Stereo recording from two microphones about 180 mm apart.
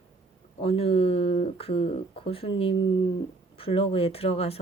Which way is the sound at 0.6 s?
30° left (ahead or behind).